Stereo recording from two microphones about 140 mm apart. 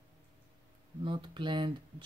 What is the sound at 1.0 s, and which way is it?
Mantra, 35° right (ahead or behind).